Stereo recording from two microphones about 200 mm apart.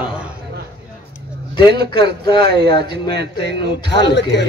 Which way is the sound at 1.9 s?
20° left (ahead or behind).